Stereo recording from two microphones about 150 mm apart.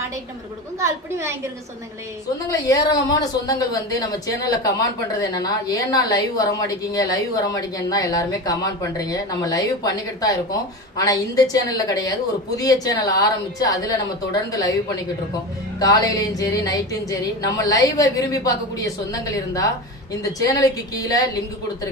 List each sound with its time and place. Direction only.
0.8 s a woman's voice: 20° right (ahead or behind)
2.5 s a woman's voice: 25° left (ahead or behind)
15.8 s a woman's voice: 25° left (ahead or behind)